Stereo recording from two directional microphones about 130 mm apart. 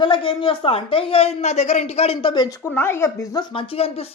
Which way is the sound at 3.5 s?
45° left (ahead or behind).